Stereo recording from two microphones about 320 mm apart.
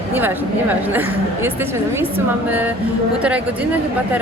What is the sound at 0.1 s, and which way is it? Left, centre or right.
A woman's voice, centre.